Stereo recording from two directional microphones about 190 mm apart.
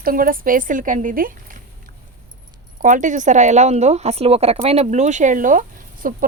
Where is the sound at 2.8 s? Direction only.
45° right (ahead or behind).